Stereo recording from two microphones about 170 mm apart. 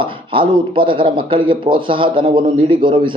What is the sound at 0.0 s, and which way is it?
Speech, 30° right (ahead or behind).